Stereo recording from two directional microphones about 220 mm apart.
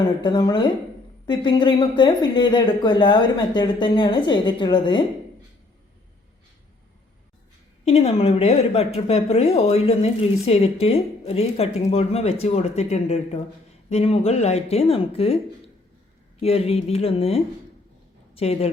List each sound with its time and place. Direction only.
0.0 s a woman's voice: 20° left (ahead or behind)
7.9 s a woman's voice: 30° left (ahead or behind)
16.4 s a woman's voice: 25° left (ahead or behind)